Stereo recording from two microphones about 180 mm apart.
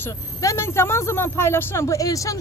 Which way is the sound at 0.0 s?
15° left (ahead or behind).